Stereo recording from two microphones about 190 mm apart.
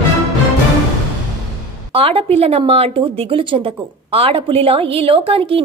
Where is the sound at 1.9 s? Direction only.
30° right (ahead or behind).